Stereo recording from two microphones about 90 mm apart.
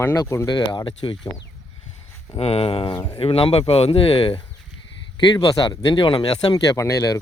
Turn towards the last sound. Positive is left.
turn(degrees=40)  # may be behind; listen again after turning